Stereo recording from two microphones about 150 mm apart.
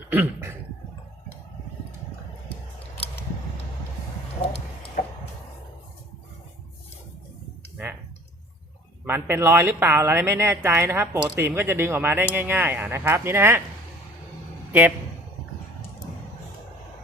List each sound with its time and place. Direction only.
0.1 s cough: 15° right (ahead or behind)
9.0 s speech: 15° right (ahead or behind)
14.7 s a man's voice: 10° right (ahead or behind)